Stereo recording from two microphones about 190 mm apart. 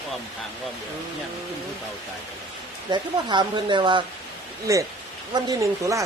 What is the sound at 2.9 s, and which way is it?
Speech, 25° right (ahead or behind).